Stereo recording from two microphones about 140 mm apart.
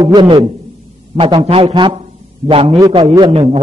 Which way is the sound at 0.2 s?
35° right (ahead or behind).